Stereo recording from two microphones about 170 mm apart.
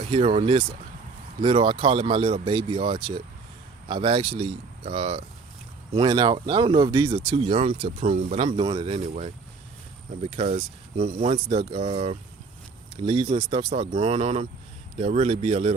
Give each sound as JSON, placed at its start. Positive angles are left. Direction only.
{"t": 0.1, "sound": "speech", "side_deg": -35}
{"t": 8.4, "sound": "speech", "side_deg": -30}